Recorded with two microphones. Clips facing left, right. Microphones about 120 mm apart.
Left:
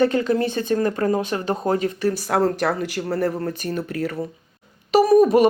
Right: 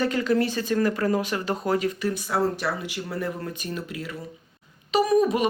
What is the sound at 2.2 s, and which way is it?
Speech, 50° left (ahead or behind).